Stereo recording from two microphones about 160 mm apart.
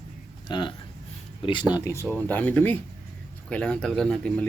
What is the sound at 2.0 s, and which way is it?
Speech, 5° left (ahead or behind).